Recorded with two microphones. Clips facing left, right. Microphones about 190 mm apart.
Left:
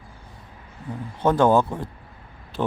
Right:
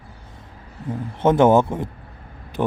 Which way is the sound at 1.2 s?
20° right (ahead or behind).